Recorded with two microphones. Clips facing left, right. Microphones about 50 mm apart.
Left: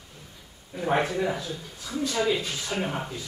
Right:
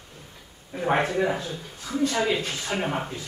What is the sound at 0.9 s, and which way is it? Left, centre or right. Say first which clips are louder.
Speech: right 2 dB; right.